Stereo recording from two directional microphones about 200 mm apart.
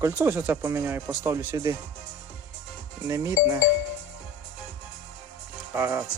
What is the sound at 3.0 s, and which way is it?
Speech, 15° right (ahead or behind).